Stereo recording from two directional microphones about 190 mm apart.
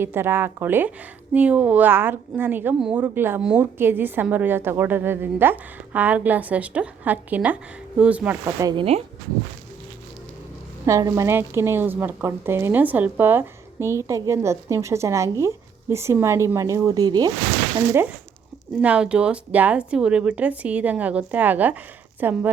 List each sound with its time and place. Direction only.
0.0 s speech: 10° right (ahead or behind)
8.7 s speech: 30° right (ahead or behind)
10.8 s speech: 15° right (ahead or behind)
18.8 s speech: 5° right (ahead or behind)